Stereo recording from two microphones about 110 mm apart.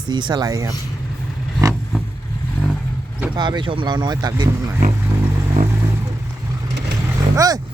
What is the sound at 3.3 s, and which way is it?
Speech, 40° right (ahead or behind).